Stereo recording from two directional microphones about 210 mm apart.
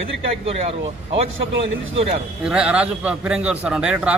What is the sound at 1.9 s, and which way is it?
Speech, 30° right (ahead or behind).